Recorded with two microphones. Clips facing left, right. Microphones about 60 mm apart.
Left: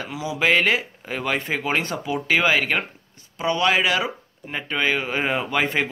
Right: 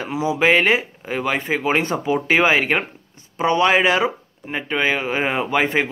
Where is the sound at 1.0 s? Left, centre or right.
Centre.